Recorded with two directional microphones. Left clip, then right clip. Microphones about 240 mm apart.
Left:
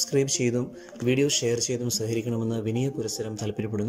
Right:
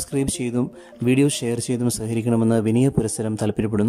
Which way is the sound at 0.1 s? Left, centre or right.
Centre.